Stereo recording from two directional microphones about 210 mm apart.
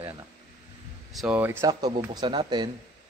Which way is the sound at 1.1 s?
5° right (ahead or behind).